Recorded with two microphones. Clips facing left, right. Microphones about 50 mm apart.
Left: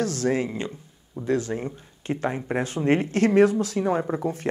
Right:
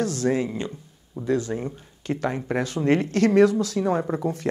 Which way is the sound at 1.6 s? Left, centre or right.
Left.